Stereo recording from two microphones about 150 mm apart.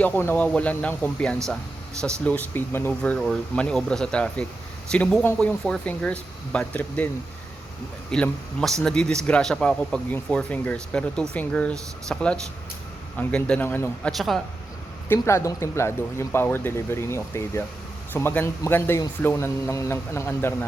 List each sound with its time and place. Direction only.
0.0 s speech: 15° left (ahead or behind)
8.1 s speech: 5° left (ahead or behind)
14.1 s speech: centre (ahead or behind)
15.1 s speech: 20° left (ahead or behind)